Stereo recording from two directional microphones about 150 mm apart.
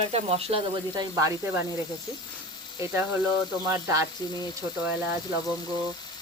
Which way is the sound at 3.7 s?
15° right (ahead or behind).